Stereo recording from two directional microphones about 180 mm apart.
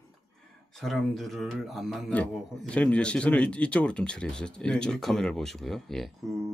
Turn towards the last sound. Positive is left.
turn(degrees=0)  # may be behind; listen again after turning